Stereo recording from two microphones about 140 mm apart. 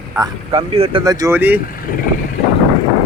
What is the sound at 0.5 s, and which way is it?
Speech, 45° right (ahead or behind).